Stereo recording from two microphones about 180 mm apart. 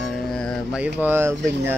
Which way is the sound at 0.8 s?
10° right (ahead or behind).